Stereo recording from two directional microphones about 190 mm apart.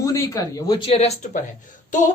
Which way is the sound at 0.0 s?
15° left (ahead or behind).